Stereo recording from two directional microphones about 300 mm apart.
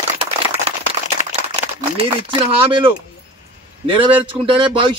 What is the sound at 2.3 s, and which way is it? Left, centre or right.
Speech, centre.